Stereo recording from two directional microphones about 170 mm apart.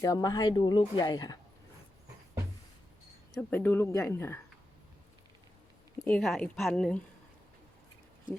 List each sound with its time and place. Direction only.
0.0 s a woman's voice: 20° left (ahead or behind)
3.3 s speech: 10° left (ahead or behind)
6.1 s a woman's voice: 5° left (ahead or behind)